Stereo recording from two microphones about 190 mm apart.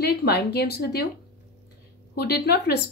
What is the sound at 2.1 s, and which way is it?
Speech, 55° left (ahead or behind).